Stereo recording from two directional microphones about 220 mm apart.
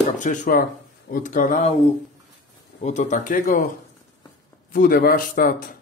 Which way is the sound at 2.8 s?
35° left (ahead or behind).